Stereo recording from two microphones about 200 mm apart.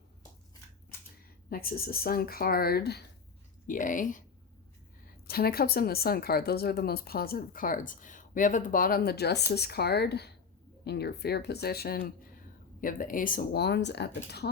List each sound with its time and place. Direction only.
1.5 s speech: 50° left (ahead or behind)
3.7 s speech: 40° left (ahead or behind)